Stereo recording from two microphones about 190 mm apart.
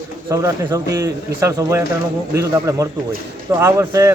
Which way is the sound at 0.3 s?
15° right (ahead or behind).